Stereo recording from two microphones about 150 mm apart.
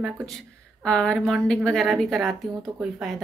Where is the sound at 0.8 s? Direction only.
5° left (ahead or behind).